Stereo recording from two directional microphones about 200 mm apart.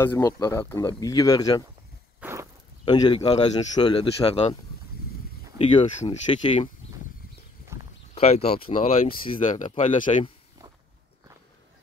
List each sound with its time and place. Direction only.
0.0 s speech: 15° left (ahead or behind)
2.1 s walk: 10° right (ahead or behind)
2.8 s speech: 20° left (ahead or behind)
5.6 s speech: 25° left (ahead or behind)
8.1 s speech: 30° left (ahead or behind)